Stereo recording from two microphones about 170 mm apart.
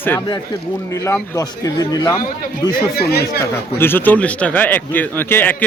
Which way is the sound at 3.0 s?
70° left (ahead or behind).